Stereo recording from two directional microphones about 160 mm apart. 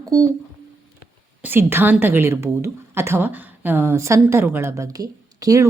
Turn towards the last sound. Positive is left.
turn(degrees=-20)  # may be behind; listen again after turning